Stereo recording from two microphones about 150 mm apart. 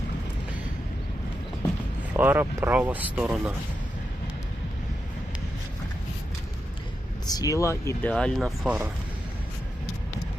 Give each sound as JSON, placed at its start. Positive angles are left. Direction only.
{"t": 2.1, "sound": "speech", "side_deg": -15}
{"t": 7.3, "sound": "speech", "side_deg": 25}
{"t": 8.1, "sound": "speech", "side_deg": 5}